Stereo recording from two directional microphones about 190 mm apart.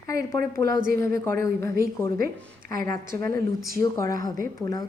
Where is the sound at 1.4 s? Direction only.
15° left (ahead or behind).